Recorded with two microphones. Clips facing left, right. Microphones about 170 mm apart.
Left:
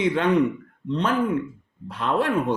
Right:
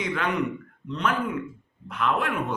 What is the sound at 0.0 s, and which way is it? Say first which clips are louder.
A woman's voice: left 7 dB; 30° left (ahead or behind).